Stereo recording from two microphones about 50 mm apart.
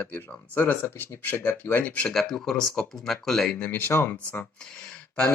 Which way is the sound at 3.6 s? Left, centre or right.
Left.